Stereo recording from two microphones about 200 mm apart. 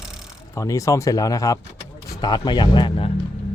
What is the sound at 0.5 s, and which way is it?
Speech, 15° left (ahead or behind).